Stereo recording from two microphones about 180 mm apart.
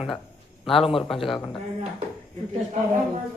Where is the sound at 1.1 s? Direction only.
Centre (ahead or behind).